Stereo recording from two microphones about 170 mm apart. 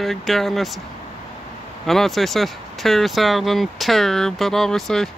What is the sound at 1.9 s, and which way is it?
Speech, centre (ahead or behind).